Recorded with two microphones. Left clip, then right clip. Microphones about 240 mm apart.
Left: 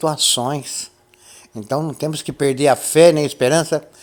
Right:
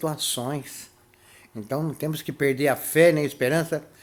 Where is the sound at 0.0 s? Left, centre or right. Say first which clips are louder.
Left 10 dB; centre.